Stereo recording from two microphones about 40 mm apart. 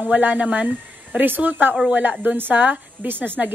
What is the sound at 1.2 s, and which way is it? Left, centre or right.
Speech, right.